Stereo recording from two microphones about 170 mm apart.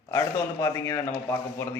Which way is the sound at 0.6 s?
15° left (ahead or behind).